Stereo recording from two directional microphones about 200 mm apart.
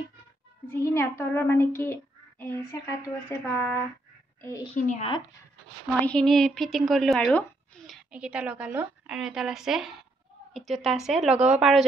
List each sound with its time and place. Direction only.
0.7 s a child's voice: 10° left (ahead or behind)
1.8 s a sound: 10° left (ahead or behind)
3.3 s a child's voice: 10° left (ahead or behind)
4.7 s speech: 35° left (ahead or behind)
5.9 s speech: 5° left (ahead or behind)